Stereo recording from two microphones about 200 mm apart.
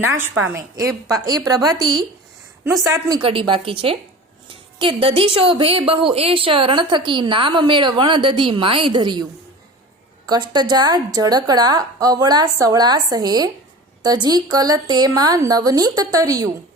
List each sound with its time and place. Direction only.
0.4 s a woman's voice: 15° right (ahead or behind)
10.2 s a woman's voice: 20° right (ahead or behind)